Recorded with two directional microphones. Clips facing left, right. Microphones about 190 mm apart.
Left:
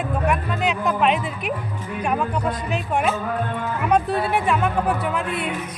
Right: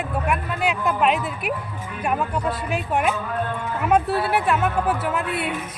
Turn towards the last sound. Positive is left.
turn(degrees=-5)  # may be behind; listen again after turning